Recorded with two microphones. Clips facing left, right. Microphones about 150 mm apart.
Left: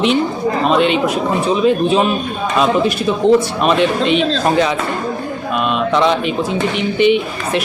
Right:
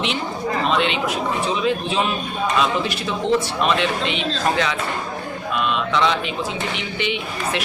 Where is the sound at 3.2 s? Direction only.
50° left (ahead or behind).